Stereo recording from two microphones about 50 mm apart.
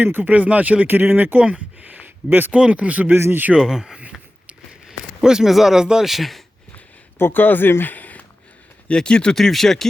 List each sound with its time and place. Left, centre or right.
0.0 s speech: right
0.9 s speech: right
1.4 s speech: right
1.9 s a sound: right
2.5 s speech: right
3.5 s speech: centre
7.2 s speech: left
8.9 s speech: centre
9.3 s speech: centre